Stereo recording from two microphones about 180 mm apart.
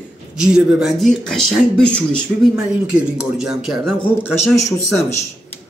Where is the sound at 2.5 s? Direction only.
5° right (ahead or behind).